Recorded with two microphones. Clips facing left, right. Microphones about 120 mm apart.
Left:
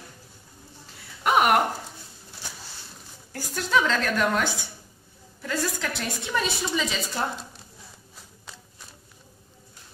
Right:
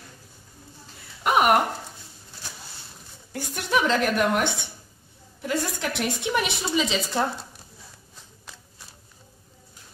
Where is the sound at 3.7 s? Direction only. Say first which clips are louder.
Right 2 dB; 20° right (ahead or behind).